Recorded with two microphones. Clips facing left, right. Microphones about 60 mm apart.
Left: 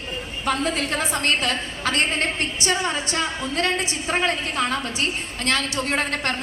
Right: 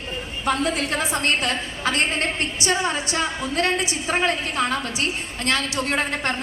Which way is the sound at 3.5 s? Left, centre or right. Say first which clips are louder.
Right 1 dB; right.